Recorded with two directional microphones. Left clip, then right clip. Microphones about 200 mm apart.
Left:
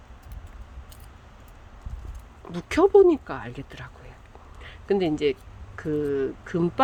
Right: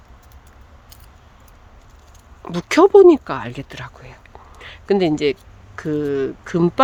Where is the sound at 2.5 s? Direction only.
35° right (ahead or behind).